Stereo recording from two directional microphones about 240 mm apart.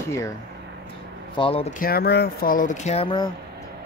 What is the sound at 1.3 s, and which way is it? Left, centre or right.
Speech, left.